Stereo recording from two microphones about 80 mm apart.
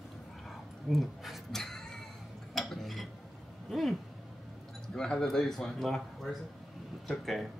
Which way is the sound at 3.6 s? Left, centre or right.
Centre.